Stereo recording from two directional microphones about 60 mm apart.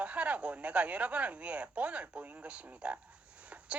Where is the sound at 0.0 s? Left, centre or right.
Right.